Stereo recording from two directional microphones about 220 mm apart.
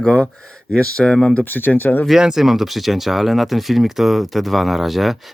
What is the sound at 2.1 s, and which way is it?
Speech, centre (ahead or behind).